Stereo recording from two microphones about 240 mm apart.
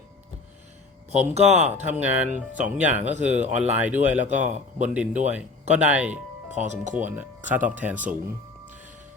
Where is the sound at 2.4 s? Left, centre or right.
Centre.